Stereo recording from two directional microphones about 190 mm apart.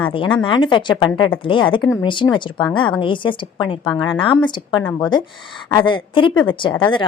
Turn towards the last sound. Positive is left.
turn(degrees=25)  # may be behind; listen again after turning